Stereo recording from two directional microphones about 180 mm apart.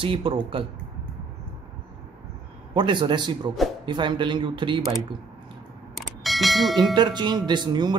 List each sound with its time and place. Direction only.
0.0 s speech: 30° right (ahead or behind)
2.7 s speech: 25° right (ahead or behind)
5.9 s a sound: centre (ahead or behind)
7.0 s speech: 25° right (ahead or behind)